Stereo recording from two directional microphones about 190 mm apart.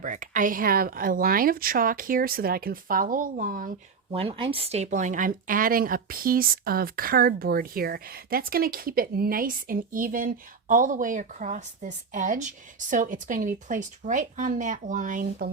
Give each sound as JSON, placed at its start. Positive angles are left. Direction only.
{"t": 0.0, "sound": "speech", "side_deg": -45}
{"t": 4.1, "sound": "speech", "side_deg": -30}